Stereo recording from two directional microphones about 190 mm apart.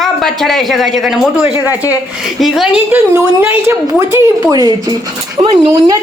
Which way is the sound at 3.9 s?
15° right (ahead or behind).